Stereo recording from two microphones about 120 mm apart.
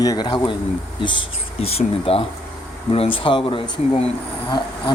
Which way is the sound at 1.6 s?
60° left (ahead or behind).